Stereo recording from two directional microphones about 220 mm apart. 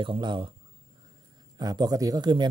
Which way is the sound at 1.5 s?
20° right (ahead or behind).